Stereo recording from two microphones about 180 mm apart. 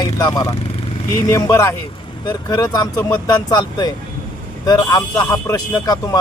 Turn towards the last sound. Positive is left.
turn(degrees=20)  # may be behind; listen again after turning